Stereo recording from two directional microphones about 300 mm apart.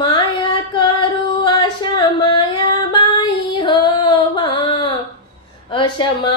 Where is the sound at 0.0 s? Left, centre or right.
Centre.